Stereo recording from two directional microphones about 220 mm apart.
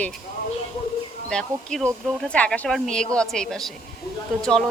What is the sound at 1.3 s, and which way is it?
A woman's voice, 5° left (ahead or behind).